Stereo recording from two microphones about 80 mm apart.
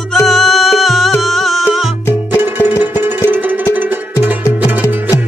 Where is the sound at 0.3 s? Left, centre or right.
Centre.